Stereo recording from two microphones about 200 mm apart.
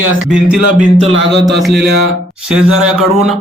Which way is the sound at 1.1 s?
60° right (ahead or behind).